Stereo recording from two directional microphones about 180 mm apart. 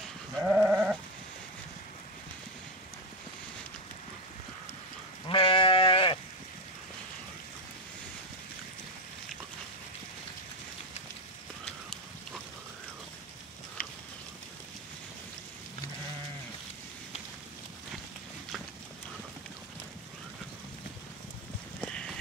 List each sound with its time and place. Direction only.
0.4 s sheep: 5° right (ahead or behind)
5.2 s sheep: 30° left (ahead or behind)
21.8 s a sound: 5° left (ahead or behind)